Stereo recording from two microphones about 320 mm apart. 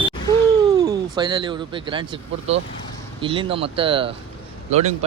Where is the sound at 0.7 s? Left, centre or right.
Centre.